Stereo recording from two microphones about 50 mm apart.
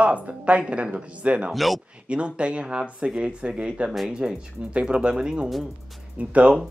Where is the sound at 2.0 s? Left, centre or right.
Right.